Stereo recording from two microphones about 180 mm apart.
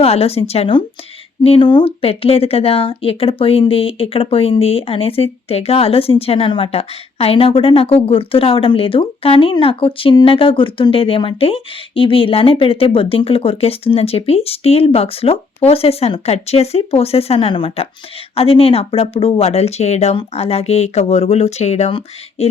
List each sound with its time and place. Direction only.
0.0 s speech: 35° left (ahead or behind)